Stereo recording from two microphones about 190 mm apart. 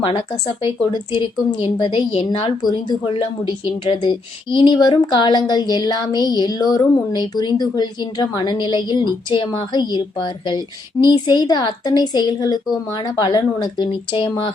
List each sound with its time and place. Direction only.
0.0 s a woman's voice: 30° left (ahead or behind)